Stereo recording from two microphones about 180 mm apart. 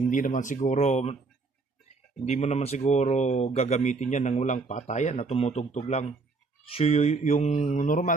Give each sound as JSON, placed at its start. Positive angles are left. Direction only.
{"t": 0.1, "sound": "speech", "side_deg": 45}
{"t": 2.2, "sound": "speech", "side_deg": 40}